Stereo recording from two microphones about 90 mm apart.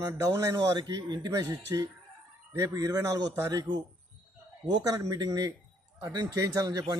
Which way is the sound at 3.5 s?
55° right (ahead or behind).